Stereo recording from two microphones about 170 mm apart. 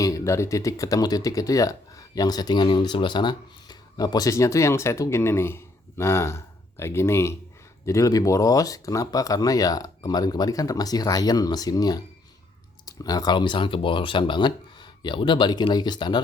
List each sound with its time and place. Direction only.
0.0 s speech: 20° left (ahead or behind)